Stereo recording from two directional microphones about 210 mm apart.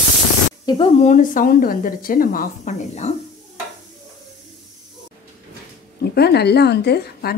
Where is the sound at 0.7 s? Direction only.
30° left (ahead or behind).